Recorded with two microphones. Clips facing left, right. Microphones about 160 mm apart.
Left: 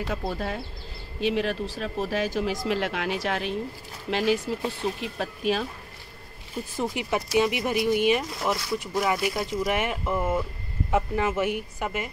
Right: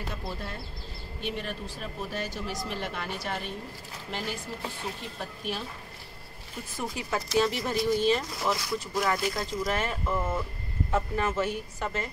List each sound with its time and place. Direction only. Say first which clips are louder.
0.1 s speech: left 7 dB; 85° left
6.8 s speech: left 5 dB; 20° left (ahead or behind)